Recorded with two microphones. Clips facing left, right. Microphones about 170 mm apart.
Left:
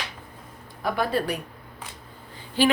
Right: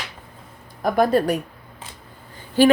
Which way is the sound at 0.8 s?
45° right (ahead or behind).